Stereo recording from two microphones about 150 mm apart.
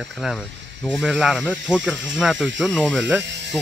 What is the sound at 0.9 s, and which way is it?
Speech, 5° right (ahead or behind).